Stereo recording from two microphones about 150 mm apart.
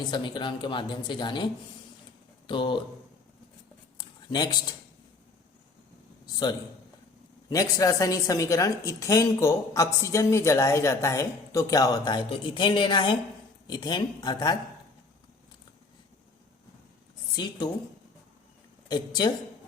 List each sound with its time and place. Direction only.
0.1 s speech: 30° left (ahead or behind)
2.5 s speech: 30° left (ahead or behind)
3.9 s a sound: 30° left (ahead or behind)
7.5 s a woman's voice: 25° left (ahead or behind)
17.3 s a woman's voice: 30° left (ahead or behind)
18.9 s a woman's voice: 30° left (ahead or behind)